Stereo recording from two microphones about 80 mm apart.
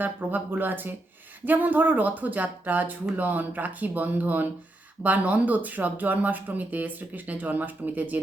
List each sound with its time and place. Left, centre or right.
0.0 s speech: right